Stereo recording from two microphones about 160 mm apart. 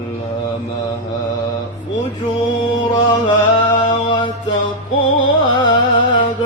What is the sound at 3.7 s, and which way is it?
Mantra, 30° left (ahead or behind).